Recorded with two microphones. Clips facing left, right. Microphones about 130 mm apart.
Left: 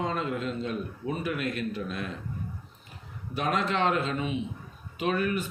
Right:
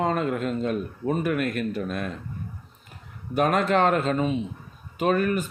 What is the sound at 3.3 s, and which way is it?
Speech, 50° right (ahead or behind).